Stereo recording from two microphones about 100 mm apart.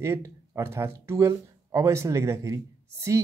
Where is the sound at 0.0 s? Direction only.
30° right (ahead or behind).